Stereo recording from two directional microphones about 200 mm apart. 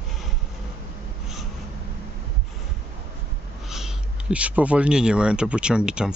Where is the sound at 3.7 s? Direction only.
5° right (ahead or behind).